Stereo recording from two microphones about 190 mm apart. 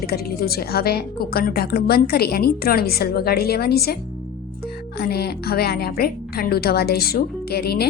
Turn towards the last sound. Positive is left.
turn(degrees=55)  # may be behind; listen again after turning